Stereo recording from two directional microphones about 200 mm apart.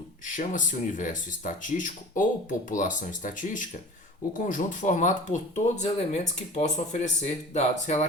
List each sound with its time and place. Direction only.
0.3 s speech: 40° left (ahead or behind)